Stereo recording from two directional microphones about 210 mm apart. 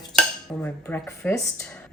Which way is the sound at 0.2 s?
5° left (ahead or behind).